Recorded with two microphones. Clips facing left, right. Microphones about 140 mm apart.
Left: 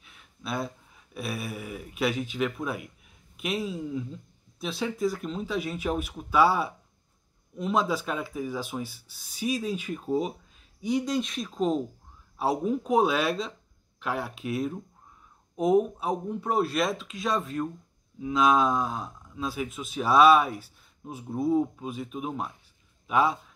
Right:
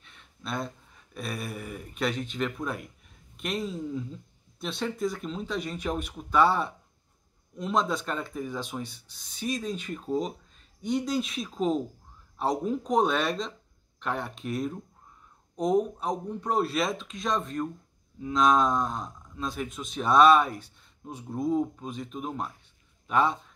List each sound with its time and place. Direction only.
0.0 s a man's voice: 5° left (ahead or behind)